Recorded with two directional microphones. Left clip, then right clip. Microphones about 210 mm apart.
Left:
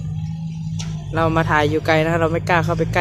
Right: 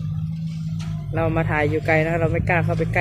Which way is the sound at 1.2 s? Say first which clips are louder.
Left 5 dB; 20° left (ahead or behind).